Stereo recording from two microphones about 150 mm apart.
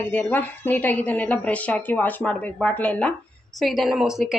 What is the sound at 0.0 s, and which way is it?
A woman's voice, 10° left (ahead or behind).